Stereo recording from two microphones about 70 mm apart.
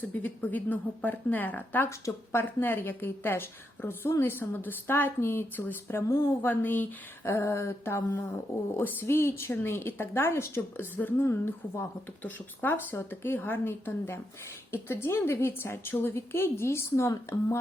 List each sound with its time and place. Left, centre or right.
0.0 s a woman's voice: left
1.9 s speech: left
2.4 s a woman's voice: left
7.3 s a woman's voice: left
10.9 s a woman's voice: left
11.3 s a woman's voice: left